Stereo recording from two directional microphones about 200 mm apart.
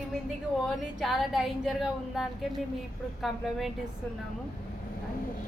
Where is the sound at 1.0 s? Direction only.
Centre (ahead or behind).